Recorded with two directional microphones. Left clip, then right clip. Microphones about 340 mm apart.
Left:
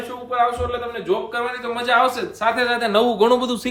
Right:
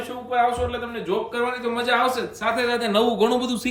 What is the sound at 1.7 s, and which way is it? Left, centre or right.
Speech, centre.